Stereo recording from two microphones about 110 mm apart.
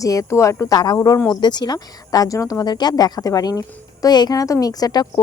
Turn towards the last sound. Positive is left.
turn(degrees=35)  # may be behind; listen again after turning